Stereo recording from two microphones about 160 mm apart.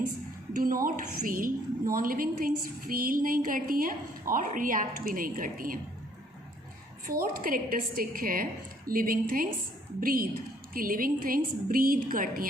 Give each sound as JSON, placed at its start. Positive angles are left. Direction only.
{"t": 0.5, "sound": "a woman's voice", "side_deg": -60}
{"t": 7.2, "sound": "a woman's voice", "side_deg": -60}